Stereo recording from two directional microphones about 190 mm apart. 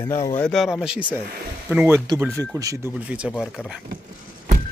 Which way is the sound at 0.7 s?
5° right (ahead or behind).